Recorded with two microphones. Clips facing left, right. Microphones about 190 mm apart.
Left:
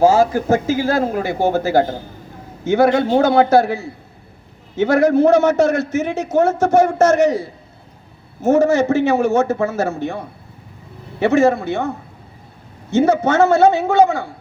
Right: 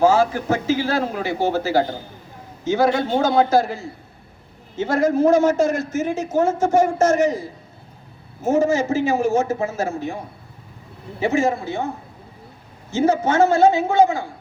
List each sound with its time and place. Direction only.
0.0 s a man's voice: 40° left (ahead or behind); by 11.9 s 70° left (ahead or behind)
12.9 s a man's voice: 70° left (ahead or behind)